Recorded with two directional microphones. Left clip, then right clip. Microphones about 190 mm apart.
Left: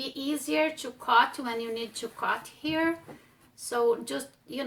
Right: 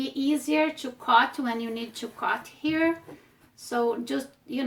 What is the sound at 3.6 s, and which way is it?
Speech, 20° right (ahead or behind).